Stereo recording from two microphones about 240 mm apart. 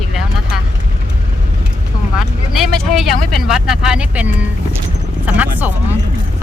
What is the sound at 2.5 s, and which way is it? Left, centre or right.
Speech, centre.